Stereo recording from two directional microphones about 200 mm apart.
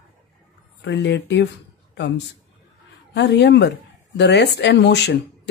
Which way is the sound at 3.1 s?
60° left (ahead or behind).